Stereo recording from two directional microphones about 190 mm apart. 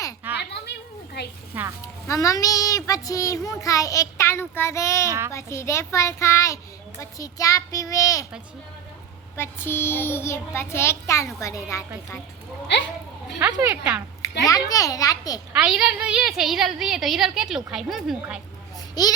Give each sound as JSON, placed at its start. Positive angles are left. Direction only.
{"t": 0.3, "sound": "a sound", "side_deg": 60}
{"t": 1.5, "sound": "speech", "side_deg": -10}
{"t": 2.0, "sound": "child singing", "side_deg": 15}
{"t": 9.3, "sound": "child singing", "side_deg": 15}
{"t": 13.4, "sound": "speech", "side_deg": -10}
{"t": 14.4, "sound": "a child's voice", "side_deg": 20}
{"t": 15.5, "sound": "a woman's voice", "side_deg": -5}
{"t": 19.0, "sound": "a child's voice", "side_deg": 20}